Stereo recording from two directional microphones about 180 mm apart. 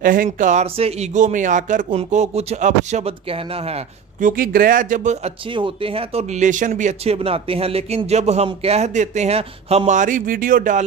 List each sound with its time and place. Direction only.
0.0 s speech: 50° right (ahead or behind)
4.2 s speech: 50° right (ahead or behind)
5.5 s speech: 30° right (ahead or behind); by 10.9 s 45° right (ahead or behind)